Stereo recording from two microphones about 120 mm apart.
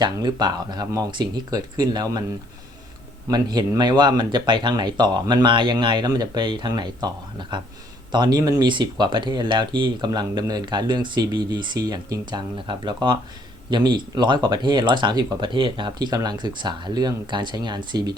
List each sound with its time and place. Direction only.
0.0 s speech: 35° right (ahead or behind)
3.2 s speech: 35° right (ahead or behind)